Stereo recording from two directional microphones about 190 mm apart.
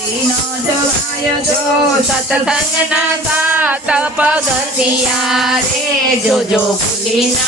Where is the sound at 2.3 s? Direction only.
5° right (ahead or behind).